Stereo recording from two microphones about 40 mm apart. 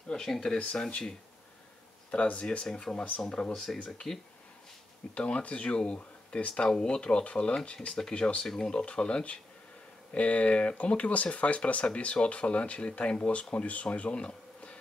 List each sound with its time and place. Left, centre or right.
0.1 s speech: centre
2.0 s speech: left
2.6 s speech: left
4.1 s speech: centre
5.1 s speech: left
6.5 s speech: centre